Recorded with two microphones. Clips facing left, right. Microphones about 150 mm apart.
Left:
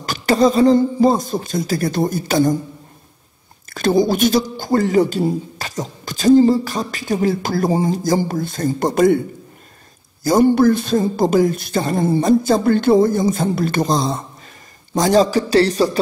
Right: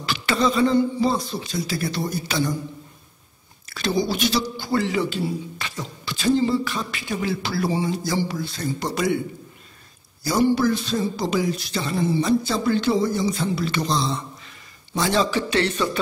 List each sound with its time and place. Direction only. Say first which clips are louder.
0.0 s speech: left 7 dB; 45° left (ahead or behind)
3.7 s speech: left 8 dB; 50° left (ahead or behind)
10.2 s a man's voice: left 7 dB; 45° left (ahead or behind)